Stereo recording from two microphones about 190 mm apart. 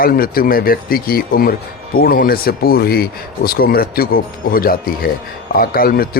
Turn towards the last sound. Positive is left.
turn(degrees=50)  # may be behind; listen again after turning